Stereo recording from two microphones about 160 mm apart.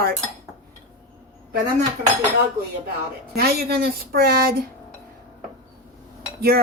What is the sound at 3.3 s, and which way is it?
Speech, 75° right (ahead or behind).